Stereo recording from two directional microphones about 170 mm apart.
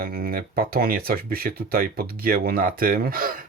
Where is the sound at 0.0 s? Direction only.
60° right (ahead or behind).